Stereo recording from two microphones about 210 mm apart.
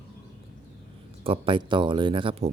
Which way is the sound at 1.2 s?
25° right (ahead or behind).